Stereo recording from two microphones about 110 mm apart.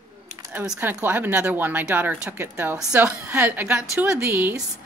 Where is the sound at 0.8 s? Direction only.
20° right (ahead or behind).